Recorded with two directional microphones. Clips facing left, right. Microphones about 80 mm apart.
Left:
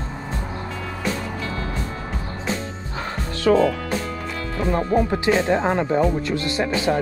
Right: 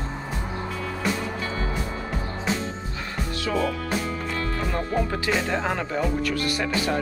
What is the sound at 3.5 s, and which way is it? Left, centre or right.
Speech, left.